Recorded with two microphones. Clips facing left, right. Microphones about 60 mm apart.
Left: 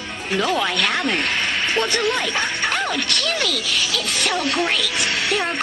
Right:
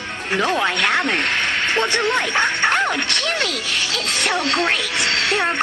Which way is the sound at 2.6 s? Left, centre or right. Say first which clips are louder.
Right 4 dB; right.